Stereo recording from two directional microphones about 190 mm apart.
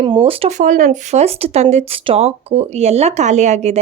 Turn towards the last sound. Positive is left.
turn(degrees=-35)  # may be behind; listen again after turning